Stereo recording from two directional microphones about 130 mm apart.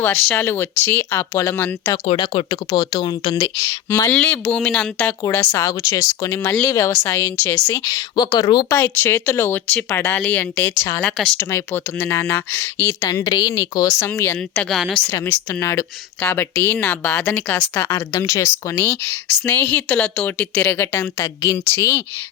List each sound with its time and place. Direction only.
0.0 s speech: 15° left (ahead or behind)
2.0 s speech: 45° left (ahead or behind)
3.8 s speech: 20° left (ahead or behind)
5.5 s speech: 25° left (ahead or behind)
8.7 s speech: 20° left (ahead or behind)
14.8 s a woman's voice: centre (ahead or behind)
15.0 s speech: 20° left (ahead or behind)